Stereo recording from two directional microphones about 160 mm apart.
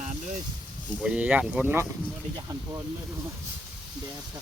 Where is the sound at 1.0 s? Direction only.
5° right (ahead or behind).